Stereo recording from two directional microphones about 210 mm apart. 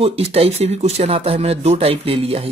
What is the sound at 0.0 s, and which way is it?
Speech, 30° right (ahead or behind).